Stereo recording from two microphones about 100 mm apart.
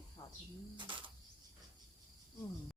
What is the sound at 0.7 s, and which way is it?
Speech, 55° right (ahead or behind).